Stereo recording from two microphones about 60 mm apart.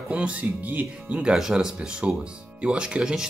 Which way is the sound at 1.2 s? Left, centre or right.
Centre.